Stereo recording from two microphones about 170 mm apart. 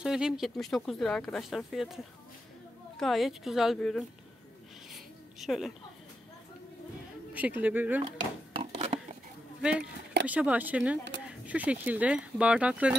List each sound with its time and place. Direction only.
0.0 s speech: 5° right (ahead or behind)
3.0 s speech: centre (ahead or behind)
4.9 s a sound: centre (ahead or behind)
7.3 s speech: 10° right (ahead or behind)
8.5 s a sound: 40° right (ahead or behind)
9.6 s speech: 5° right (ahead or behind)